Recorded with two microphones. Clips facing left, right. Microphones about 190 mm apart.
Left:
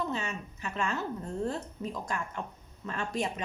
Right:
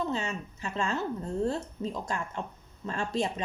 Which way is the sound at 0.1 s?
30° right (ahead or behind).